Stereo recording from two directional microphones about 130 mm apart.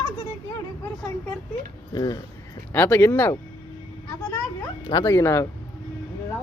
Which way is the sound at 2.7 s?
15° left (ahead or behind).